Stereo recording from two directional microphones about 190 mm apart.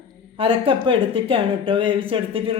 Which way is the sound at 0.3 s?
30° right (ahead or behind).